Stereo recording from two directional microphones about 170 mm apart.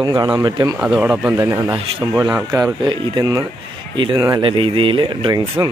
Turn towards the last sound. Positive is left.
turn(degrees=-25)  # may be behind; listen again after turning